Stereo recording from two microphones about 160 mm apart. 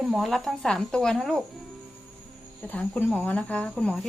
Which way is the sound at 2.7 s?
10° left (ahead or behind).